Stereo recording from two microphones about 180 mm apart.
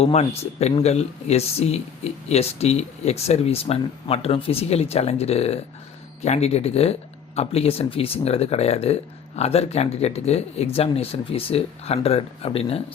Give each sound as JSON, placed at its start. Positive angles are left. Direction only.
{"t": 0.0, "sound": "speech", "side_deg": 35}